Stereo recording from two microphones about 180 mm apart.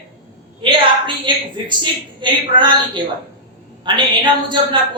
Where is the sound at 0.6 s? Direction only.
30° right (ahead or behind).